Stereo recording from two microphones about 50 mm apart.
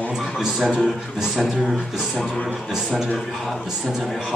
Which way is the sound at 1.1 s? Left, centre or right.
Centre.